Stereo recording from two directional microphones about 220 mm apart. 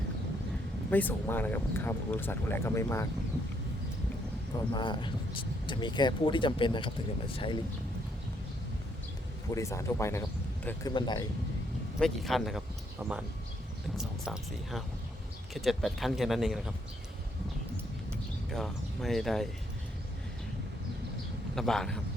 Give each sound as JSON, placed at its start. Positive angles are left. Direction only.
{"t": 0.9, "sound": "speech", "side_deg": 10}
{"t": 4.7, "sound": "speech", "side_deg": 20}
{"t": 9.5, "sound": "speech", "side_deg": 15}
{"t": 11.9, "sound": "speech", "side_deg": 0}
{"t": 18.5, "sound": "speech", "side_deg": 0}
{"t": 21.5, "sound": "speech", "side_deg": 0}